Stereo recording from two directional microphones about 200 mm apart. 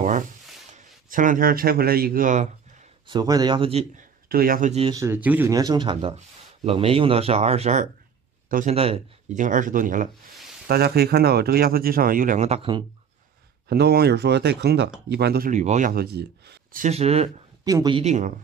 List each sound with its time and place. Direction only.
0.7 s speech: 40° right (ahead or behind)
3.1 s speech: 20° right (ahead or behind)
4.3 s speech: 45° right (ahead or behind)
4.9 s speech: 10° right (ahead or behind); by 12.8 s 25° right (ahead or behind)
13.7 s speech: 55° right (ahead or behind)
15.5 s speech: 35° right (ahead or behind); by 16.8 s 55° right (ahead or behind)
16.8 s speech: 30° right (ahead or behind)
17.6 s speech: 20° right (ahead or behind)
18.0 s speech: 35° right (ahead or behind)